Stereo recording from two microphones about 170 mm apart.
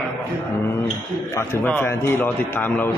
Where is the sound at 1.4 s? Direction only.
15° left (ahead or behind).